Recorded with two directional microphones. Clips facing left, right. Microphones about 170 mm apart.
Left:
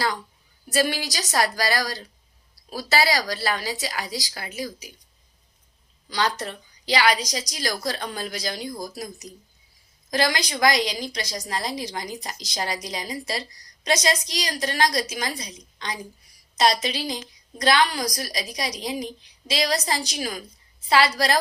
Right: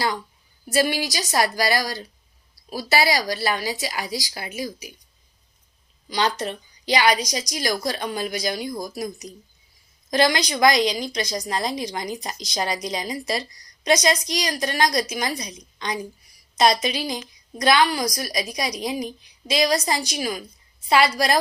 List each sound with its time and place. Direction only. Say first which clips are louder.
0.7 s a woman's voice: right 2 dB; 15° right (ahead or behind)
6.1 s a woman's voice: right 2 dB; 20° right (ahead or behind)